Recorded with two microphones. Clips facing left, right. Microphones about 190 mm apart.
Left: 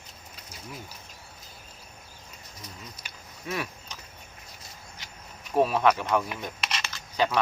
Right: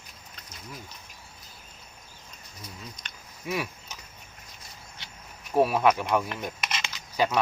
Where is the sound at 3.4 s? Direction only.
10° right (ahead or behind).